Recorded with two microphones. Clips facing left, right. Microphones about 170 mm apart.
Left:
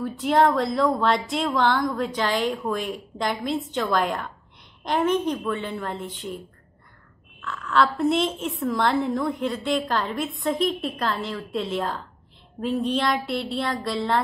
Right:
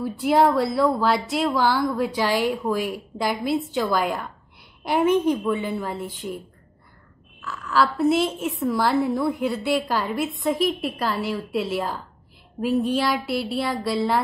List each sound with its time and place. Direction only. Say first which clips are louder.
0.0 s a woman's voice: right 1 dB; 10° right (ahead or behind)
7.4 s a woman's voice: even; 5° right (ahead or behind)